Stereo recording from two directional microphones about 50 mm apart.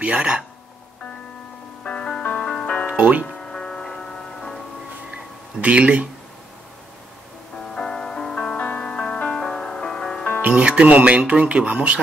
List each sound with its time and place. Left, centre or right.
0.0 s speech: right
1.9 s music: centre
2.9 s speech: right
3.3 s music: centre
5.1 s a sound: right
7.7 s music: centre
8.5 s music: left
8.8 s music: centre
10.4 s speech: right